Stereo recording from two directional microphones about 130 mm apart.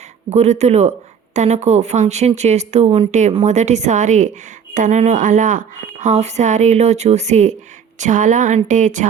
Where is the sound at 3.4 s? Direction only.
65° right (ahead or behind).